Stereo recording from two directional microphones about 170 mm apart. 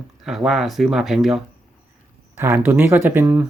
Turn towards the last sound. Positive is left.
turn(degrees=-10)  # may be behind; listen again after turning